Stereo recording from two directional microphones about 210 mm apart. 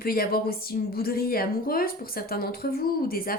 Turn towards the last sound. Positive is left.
turn(degrees=45)  # may be behind; listen again after turning